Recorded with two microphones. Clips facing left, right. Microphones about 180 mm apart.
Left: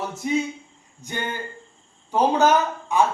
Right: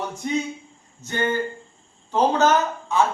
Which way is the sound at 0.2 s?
5° left (ahead or behind).